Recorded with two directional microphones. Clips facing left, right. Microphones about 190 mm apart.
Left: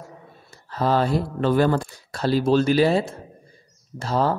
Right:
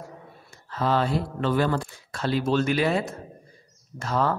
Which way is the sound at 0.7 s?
40° left (ahead or behind).